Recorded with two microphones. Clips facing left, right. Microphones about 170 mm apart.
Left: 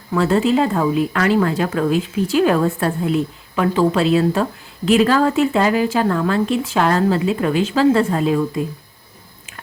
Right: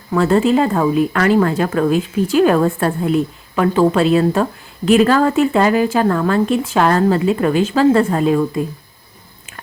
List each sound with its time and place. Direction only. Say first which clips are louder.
0.1 s speech: right 2 dB; 45° right (ahead or behind)